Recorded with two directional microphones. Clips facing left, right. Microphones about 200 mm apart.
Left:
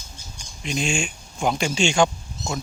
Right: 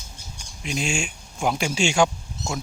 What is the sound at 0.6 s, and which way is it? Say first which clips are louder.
Speech: left 2 dB; 5° right (ahead or behind).